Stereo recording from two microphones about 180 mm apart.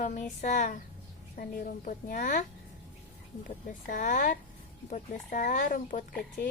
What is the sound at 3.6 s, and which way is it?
Speech, 50° left (ahead or behind).